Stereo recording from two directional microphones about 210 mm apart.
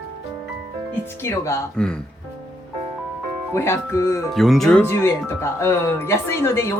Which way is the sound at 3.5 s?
10° left (ahead or behind).